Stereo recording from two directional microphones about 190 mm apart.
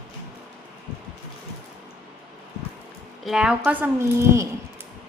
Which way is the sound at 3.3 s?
5° right (ahead or behind).